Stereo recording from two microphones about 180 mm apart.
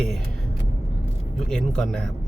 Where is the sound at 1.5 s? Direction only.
5° left (ahead or behind).